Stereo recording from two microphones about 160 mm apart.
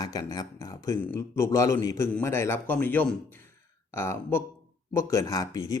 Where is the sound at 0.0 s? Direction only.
25° left (ahead or behind).